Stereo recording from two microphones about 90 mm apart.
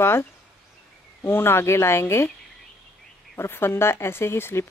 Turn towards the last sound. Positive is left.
turn(degrees=25)  # may be behind; listen again after turning